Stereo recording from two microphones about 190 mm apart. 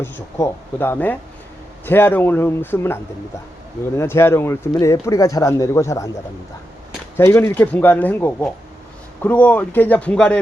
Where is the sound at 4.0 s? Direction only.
15° left (ahead or behind).